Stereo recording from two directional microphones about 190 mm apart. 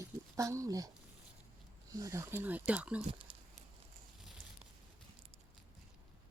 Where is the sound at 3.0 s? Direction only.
25° right (ahead or behind).